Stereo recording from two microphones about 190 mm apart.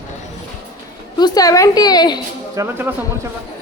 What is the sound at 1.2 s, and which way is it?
A woman's voice, 20° left (ahead or behind).